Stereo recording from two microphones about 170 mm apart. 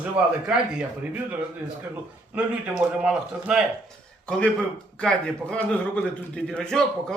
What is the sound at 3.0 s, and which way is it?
Speech, 5° right (ahead or behind).